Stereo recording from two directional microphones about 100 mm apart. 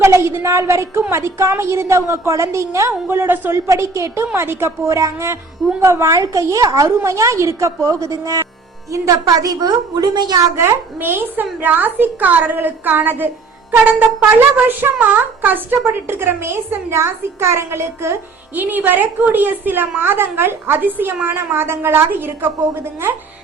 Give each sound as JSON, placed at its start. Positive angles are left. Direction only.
{"t": 0.0, "sound": "a woman's voice", "side_deg": -25}
{"t": 9.2, "sound": "a woman's voice", "side_deg": -40}
{"t": 10.6, "sound": "a woman's voice", "side_deg": -25}